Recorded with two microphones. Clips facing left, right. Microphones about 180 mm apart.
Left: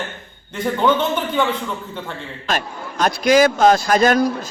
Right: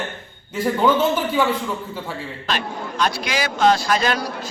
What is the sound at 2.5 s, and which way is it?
A man's voice, 45° left (ahead or behind).